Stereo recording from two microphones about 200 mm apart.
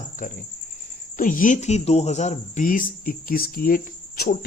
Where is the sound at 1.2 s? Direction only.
45° left (ahead or behind).